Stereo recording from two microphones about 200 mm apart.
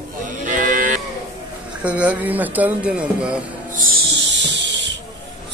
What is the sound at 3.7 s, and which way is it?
Music, 45° right (ahead or behind).